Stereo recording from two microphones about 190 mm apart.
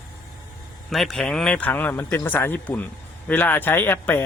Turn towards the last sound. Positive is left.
turn(degrees=10)  # may be behind; listen again after turning